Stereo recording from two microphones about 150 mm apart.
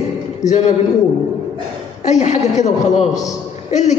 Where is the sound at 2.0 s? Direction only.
50° left (ahead or behind).